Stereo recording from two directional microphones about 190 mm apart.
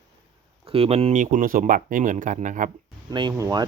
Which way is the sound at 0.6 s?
30° right (ahead or behind).